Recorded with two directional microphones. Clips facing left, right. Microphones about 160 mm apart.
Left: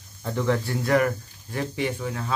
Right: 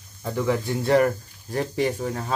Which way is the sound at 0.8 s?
30° right (ahead or behind).